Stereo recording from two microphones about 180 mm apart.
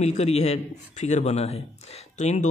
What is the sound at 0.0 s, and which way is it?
A man's voice, 40° left (ahead or behind).